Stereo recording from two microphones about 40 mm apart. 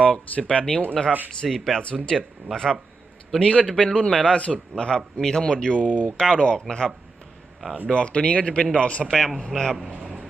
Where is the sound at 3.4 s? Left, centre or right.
Left.